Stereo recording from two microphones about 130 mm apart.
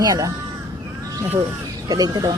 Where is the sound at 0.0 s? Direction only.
30° right (ahead or behind).